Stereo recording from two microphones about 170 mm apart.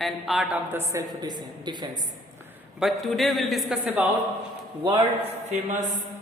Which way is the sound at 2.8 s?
Centre (ahead or behind).